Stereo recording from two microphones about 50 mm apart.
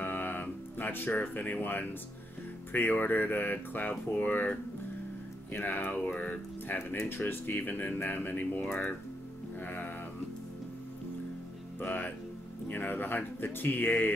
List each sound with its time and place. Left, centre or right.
0.0 s music: left
2.7 s speech: left
3.9 s speech: left
7.1 s speech: left
8.6 s speech: left
9.7 s music: left
11.8 s speech: left